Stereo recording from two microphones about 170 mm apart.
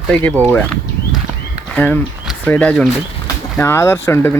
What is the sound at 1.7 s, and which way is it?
Speech, 10° left (ahead or behind).